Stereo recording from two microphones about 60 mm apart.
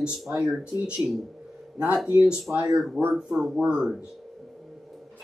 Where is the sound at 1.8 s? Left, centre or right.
Right.